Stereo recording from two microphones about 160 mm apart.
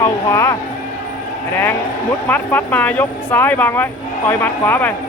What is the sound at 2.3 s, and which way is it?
Speech, 10° left (ahead or behind).